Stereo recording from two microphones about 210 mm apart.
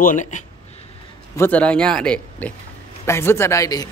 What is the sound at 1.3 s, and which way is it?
Speech, 10° left (ahead or behind).